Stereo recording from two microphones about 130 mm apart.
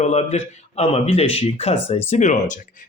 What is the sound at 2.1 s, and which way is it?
Speech, 60° left (ahead or behind).